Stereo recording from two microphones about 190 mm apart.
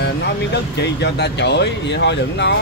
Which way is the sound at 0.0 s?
65° left (ahead or behind).